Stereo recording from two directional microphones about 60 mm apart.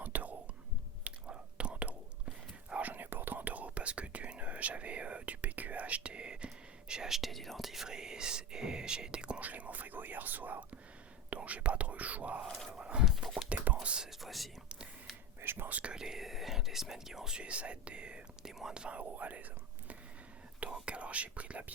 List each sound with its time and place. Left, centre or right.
0.0 s whispering: right
9.4 s whispering: right
12.5 s a sound: centre
12.7 s horse: centre
13.1 s a sound: centre
13.8 s whispering: centre
14.2 s speech: centre
15.4 s speech: right
15.8 s speech: centre
20.8 s speech: right